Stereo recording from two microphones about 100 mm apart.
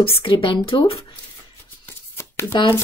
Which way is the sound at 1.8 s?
25° left (ahead or behind).